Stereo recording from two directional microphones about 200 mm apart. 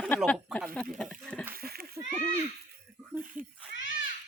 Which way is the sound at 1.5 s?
50° right (ahead or behind).